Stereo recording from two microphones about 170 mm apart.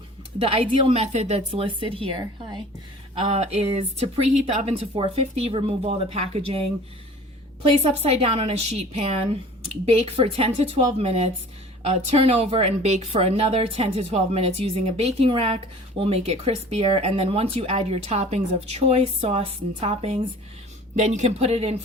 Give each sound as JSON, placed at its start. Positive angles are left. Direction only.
{"t": 0.4, "sound": "a woman's voice", "side_deg": -30}
{"t": 7.7, "sound": "a woman's voice", "side_deg": -40}